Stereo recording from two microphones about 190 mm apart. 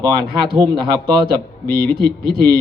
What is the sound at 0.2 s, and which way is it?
A man's voice, 55° right (ahead or behind).